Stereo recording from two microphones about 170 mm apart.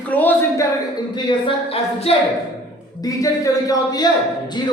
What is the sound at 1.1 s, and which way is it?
A woman's voice, 30° left (ahead or behind).